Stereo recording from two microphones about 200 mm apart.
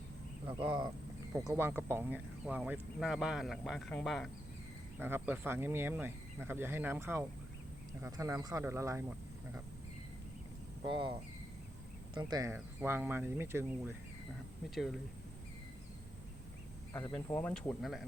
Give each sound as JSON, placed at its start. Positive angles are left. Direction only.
{"t": 0.4, "sound": "speech", "side_deg": -25}
{"t": 1.3, "sound": "speech", "side_deg": -10}
{"t": 4.9, "sound": "speech", "side_deg": -10}
{"t": 10.8, "sound": "speech", "side_deg": -25}
{"t": 12.1, "sound": "speech", "side_deg": -20}
{"t": 16.9, "sound": "speech", "side_deg": 10}